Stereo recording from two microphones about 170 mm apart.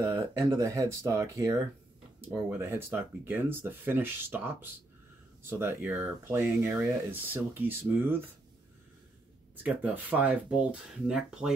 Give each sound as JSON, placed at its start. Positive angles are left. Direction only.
{"t": 0.0, "sound": "speech", "side_deg": -15}
{"t": 2.6, "sound": "speech", "side_deg": -15}
{"t": 9.6, "sound": "speech", "side_deg": -10}